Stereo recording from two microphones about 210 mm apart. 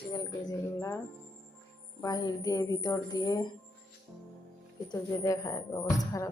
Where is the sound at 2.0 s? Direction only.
20° left (ahead or behind).